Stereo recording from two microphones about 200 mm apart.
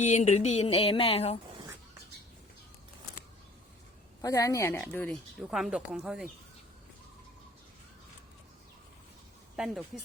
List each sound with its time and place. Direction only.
0.0 s a sound: 35° left (ahead or behind)
4.2 s speech: 15° left (ahead or behind); by 6.3 s 5° right (ahead or behind)
9.6 s speech: centre (ahead or behind)